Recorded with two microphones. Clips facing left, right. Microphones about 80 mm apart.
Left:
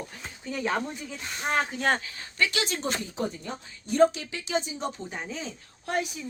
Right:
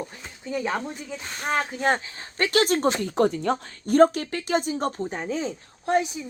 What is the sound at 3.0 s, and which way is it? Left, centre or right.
Speech, right.